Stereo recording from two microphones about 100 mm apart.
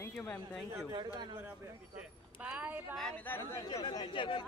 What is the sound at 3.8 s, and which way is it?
Speech, 40° left (ahead or behind).